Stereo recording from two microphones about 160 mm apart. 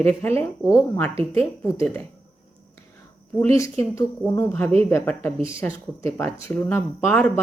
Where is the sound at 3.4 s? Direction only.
20° left (ahead or behind).